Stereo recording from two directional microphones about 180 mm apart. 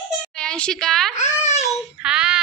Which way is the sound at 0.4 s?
5° left (ahead or behind).